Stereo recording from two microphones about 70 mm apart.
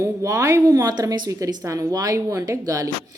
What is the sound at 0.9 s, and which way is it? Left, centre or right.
Speech, right.